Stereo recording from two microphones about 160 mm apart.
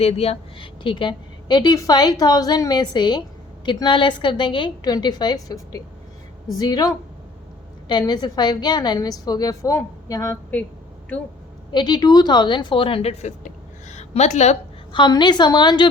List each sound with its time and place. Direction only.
0.0 s a woman's voice: 40° left (ahead or behind); by 10.3 s 20° left (ahead or behind)
11.7 s speech: 25° left (ahead or behind); by 14.6 s 45° left (ahead or behind)
14.9 s a woman's voice: 30° left (ahead or behind)